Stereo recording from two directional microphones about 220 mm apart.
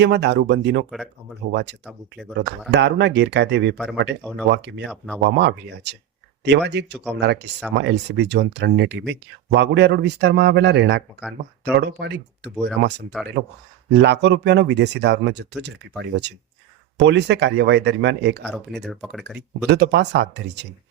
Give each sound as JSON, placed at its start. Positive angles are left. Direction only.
{"t": 0.0, "sound": "speech", "side_deg": -50}
{"t": 1.8, "sound": "speech", "side_deg": 0}
{"t": 2.6, "sound": "speech", "side_deg": -50}
{"t": 4.2, "sound": "speech", "side_deg": 5}
{"t": 4.5, "sound": "speech", "side_deg": -50}
{"t": 4.9, "sound": "speech", "side_deg": 5}
{"t": 5.2, "sound": "speech", "side_deg": -50}
{"t": 11.2, "sound": "speech", "side_deg": -5}
{"t": 11.8, "sound": "speech", "side_deg": -50}
{"t": 18.4, "sound": "speech", "side_deg": 0}
{"t": 19.7, "sound": "speech", "side_deg": -50}